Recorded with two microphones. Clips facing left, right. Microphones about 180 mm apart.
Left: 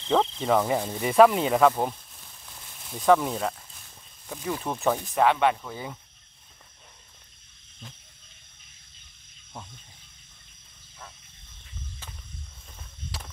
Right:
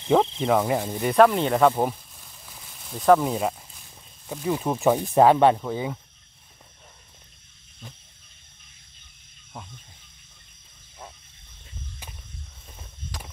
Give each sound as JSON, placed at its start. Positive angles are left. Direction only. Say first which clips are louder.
{"t": 0.0, "sound": "speech", "louder": "right 4 dB", "side_deg": -10}
{"t": 5.0, "sound": "speech", "louder": "right 6 dB", "side_deg": -35}
{"t": 5.7, "sound": "speech", "louder": "right 8 dB", "side_deg": -15}